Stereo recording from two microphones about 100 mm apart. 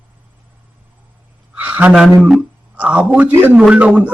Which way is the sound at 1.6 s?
15° right (ahead or behind).